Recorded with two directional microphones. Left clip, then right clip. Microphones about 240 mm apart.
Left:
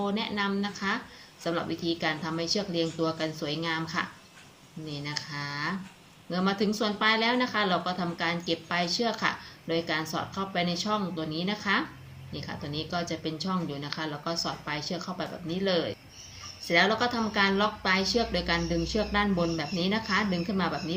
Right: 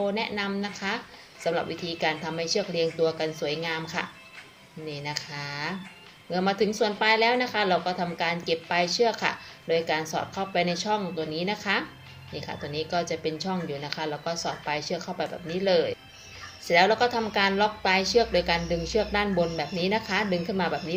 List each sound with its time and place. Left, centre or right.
0.0 s a woman's voice: centre
4.9 s a woman's voice: centre